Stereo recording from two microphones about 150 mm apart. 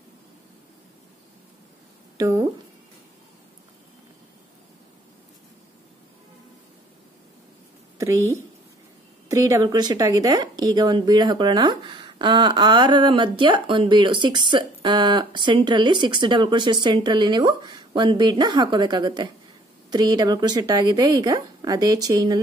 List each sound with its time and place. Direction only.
2.1 s speech: 20° right (ahead or behind)
9.3 s speech: 20° right (ahead or behind)